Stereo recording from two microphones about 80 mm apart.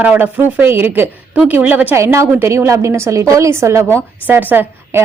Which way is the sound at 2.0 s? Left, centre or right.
Right.